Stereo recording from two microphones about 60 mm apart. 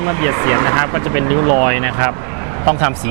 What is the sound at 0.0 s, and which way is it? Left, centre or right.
Speech, right.